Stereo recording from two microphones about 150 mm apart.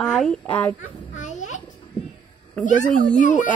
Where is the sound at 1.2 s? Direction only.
55° left (ahead or behind).